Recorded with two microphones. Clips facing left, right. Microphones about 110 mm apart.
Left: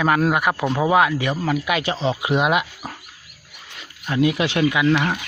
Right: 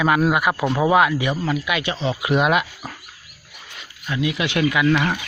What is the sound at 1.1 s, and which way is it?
Speech, 45° left (ahead or behind).